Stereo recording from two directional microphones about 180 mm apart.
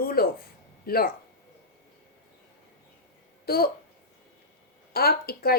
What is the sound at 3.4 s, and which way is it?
Speech, 60° left (ahead or behind).